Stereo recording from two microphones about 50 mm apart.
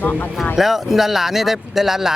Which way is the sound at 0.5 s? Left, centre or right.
Centre.